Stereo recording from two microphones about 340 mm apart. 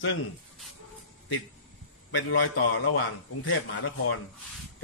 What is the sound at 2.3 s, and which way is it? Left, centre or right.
A man's voice, left.